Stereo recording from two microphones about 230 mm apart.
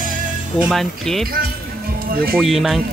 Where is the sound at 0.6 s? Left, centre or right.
Centre.